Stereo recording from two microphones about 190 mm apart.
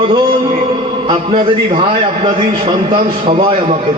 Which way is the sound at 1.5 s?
30° right (ahead or behind).